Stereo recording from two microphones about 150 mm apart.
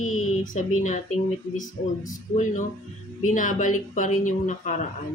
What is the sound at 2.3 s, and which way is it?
Speech, 55° left (ahead or behind).